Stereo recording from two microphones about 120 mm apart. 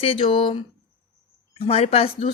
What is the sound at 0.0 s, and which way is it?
Speech, 50° left (ahead or behind).